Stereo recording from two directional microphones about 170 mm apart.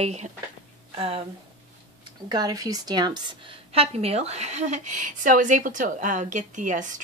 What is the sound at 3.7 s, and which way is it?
A woman's voice, 35° right (ahead or behind).